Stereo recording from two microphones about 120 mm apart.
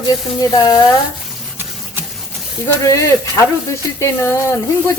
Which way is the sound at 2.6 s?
25° left (ahead or behind).